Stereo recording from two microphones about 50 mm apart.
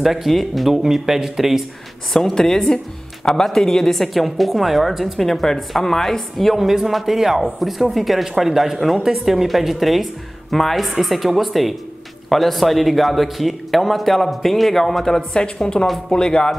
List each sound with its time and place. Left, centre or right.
0.0 s a woman's voice: centre
2.1 s a woman's voice: centre